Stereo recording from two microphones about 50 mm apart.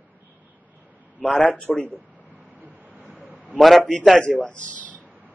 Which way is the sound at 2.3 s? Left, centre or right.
Right.